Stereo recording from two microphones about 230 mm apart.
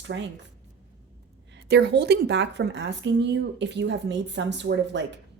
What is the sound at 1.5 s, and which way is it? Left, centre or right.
Speech, right.